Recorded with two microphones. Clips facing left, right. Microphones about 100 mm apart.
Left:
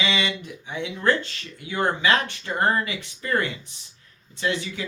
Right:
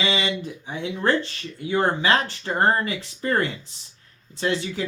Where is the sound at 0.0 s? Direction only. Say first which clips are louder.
Right 1 dB; 30° right (ahead or behind).